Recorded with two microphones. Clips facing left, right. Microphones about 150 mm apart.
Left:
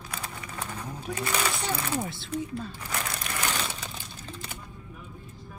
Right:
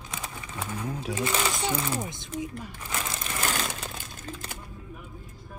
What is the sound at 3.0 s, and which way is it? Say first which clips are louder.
Crumpling: right 2 dB; 25° right (ahead or behind).